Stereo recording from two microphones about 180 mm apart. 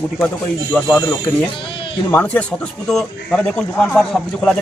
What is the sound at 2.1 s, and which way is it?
Speech, 10° left (ahead or behind).